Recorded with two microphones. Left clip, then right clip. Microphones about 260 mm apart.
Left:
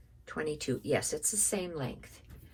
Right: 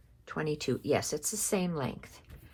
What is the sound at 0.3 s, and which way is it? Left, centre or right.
Speech, centre.